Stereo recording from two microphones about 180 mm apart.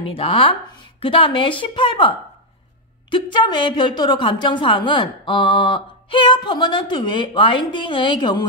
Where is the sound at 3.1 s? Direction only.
25° left (ahead or behind).